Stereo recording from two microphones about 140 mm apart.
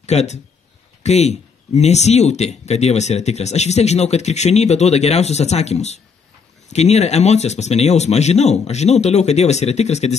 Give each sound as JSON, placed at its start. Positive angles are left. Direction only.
{"t": 0.0, "sound": "speech", "side_deg": 50}